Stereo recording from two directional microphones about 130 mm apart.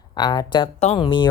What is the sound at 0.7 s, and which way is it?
Speech, 55° left (ahead or behind).